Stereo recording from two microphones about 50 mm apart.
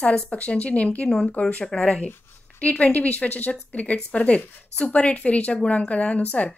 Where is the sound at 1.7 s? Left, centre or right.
Centre.